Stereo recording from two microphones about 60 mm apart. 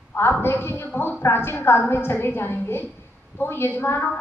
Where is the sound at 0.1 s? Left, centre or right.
Left.